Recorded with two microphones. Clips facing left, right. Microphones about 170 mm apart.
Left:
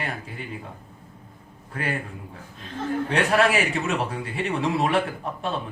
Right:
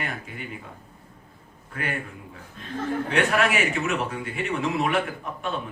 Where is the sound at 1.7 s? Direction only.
35° left (ahead or behind).